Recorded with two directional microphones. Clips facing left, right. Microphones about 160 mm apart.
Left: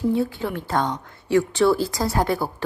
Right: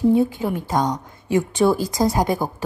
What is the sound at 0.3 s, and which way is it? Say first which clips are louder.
A woman's voice: right 2 dB; 15° right (ahead or behind).